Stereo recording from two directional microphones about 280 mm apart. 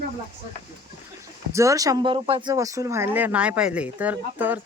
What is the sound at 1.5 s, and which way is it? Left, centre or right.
Speech, centre.